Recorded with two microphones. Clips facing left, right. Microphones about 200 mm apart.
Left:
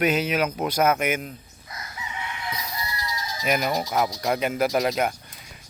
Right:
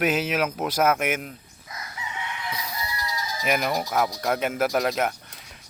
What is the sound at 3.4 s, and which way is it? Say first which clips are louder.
Speech: left 1 dB; centre (ahead or behind).